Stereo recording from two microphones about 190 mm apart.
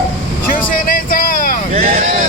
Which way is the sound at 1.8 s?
45° right (ahead or behind).